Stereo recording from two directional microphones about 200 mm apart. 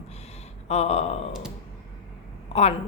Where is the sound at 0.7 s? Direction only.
30° left (ahead or behind).